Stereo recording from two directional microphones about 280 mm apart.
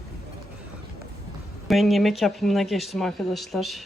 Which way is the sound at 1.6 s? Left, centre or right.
Centre.